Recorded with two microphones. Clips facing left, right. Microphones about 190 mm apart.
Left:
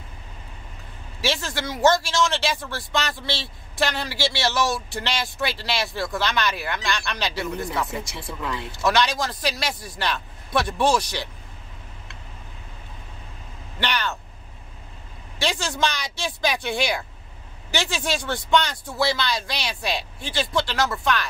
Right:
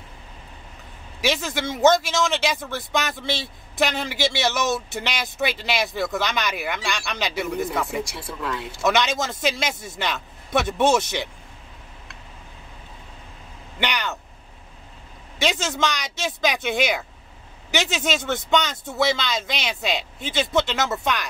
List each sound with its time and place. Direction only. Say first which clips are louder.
1.2 s speech: right 2 dB; 20° right (ahead or behind); by 8.6 s centre (ahead or behind)
8.7 s speech: even; 20° right (ahead or behind)
13.7 s speech: even; 15° right (ahead or behind)
15.3 s speech: right 2 dB; 20° right (ahead or behind)